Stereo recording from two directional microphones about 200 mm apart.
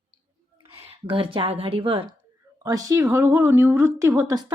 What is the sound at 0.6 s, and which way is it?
A woman's voice, 30° right (ahead or behind).